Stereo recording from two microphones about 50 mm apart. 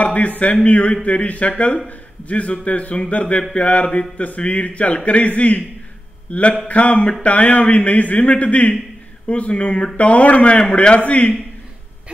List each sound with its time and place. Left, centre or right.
0.0 s a man's voice: left